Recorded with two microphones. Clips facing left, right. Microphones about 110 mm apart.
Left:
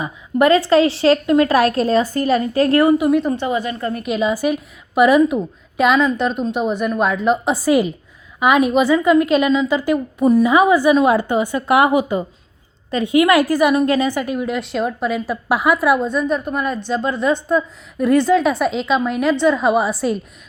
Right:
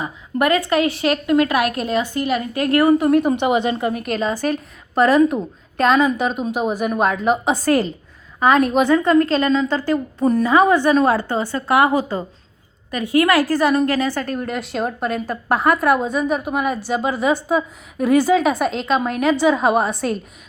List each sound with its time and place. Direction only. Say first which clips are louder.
0.0 s a woman's voice: left 4 dB; 25° left (ahead or behind)
3.0 s a woman's voice: even; centre (ahead or behind)
3.4 s a woman's voice: right 3 dB; 20° right (ahead or behind)
3.9 s a woman's voice: left 2 dB; 5° left (ahead or behind)
6.0 s a woman's voice: left 1 dB; 5° right (ahead or behind)